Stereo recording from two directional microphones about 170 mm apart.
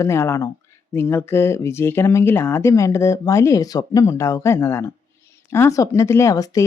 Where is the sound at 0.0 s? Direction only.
15° left (ahead or behind).